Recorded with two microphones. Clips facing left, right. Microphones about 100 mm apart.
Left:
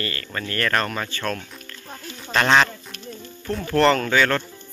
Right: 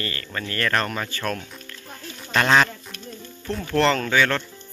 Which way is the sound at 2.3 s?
Centre (ahead or behind).